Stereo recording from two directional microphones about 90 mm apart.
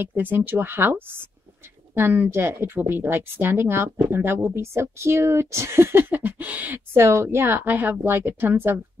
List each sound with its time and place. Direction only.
0.0 s speech: 20° right (ahead or behind)